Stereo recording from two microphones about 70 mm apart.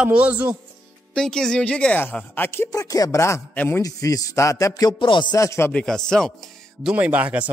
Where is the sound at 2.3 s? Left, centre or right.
Left.